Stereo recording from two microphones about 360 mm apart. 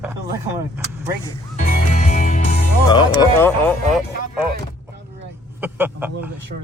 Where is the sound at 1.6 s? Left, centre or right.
Left.